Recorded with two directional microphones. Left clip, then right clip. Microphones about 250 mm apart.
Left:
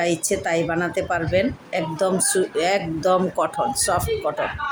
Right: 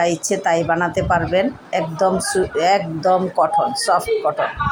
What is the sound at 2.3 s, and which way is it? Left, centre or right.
Speech, centre.